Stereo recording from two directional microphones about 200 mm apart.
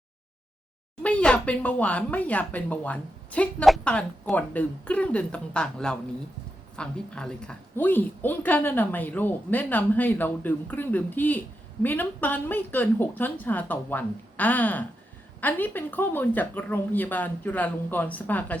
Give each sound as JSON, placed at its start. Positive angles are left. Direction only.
{"t": 1.0, "sound": "a woman's voice", "side_deg": 5}